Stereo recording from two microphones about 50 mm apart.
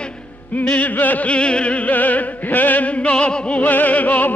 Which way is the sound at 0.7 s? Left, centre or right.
Left.